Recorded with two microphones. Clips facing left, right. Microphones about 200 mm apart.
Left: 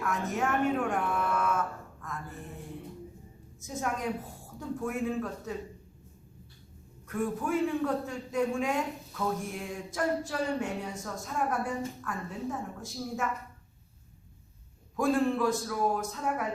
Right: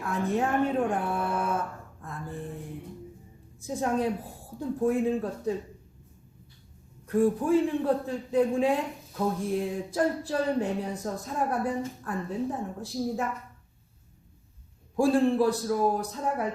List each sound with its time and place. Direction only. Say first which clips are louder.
0.0 s a sound: right 3 dB; 30° right (ahead or behind)
3.6 s a man's voice: right 6 dB; 30° right (ahead or behind)
7.1 s a man's voice: right 7 dB; 30° right (ahead or behind)
14.9 s a man's voice: right 4 dB; 30° right (ahead or behind)